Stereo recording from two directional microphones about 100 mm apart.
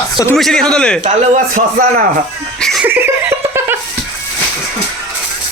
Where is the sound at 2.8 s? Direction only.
20° right (ahead or behind).